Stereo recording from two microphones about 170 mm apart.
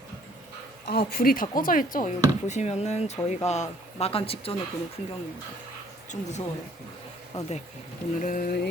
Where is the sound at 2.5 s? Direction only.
40° left (ahead or behind).